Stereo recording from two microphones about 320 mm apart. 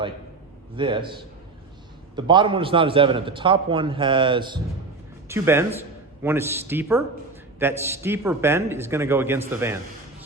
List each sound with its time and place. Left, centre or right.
0.8 s a man's voice: centre